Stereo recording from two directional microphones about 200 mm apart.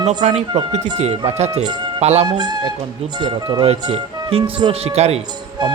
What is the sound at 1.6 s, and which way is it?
Speech, 20° right (ahead or behind).